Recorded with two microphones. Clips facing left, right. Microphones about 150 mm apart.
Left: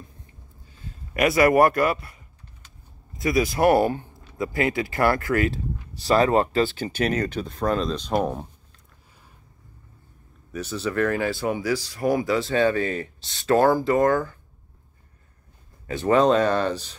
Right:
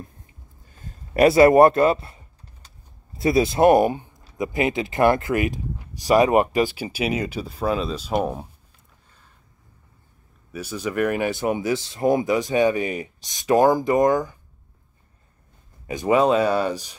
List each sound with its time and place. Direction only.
0.7 s a sound: 45° right (ahead or behind)
1.1 s speech: 30° right (ahead or behind); by 8.5 s 5° right (ahead or behind)
10.5 s speech: 10° right (ahead or behind)
15.9 s speech: 10° right (ahead or behind)